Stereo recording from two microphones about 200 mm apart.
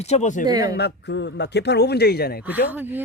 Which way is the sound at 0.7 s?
60° left (ahead or behind).